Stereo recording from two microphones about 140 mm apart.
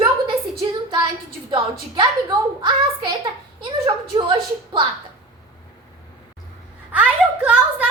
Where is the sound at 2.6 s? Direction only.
35° right (ahead or behind).